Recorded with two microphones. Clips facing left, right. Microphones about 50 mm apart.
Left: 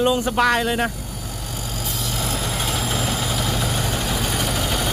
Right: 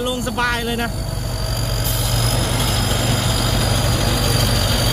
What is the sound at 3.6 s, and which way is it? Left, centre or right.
Vehicle, right.